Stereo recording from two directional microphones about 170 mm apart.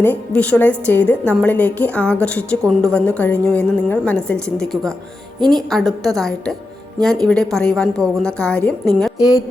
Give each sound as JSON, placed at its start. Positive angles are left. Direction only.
{"t": 0.0, "sound": "a woman's voice", "side_deg": 10}
{"t": 9.1, "sound": "a woman's voice", "side_deg": 20}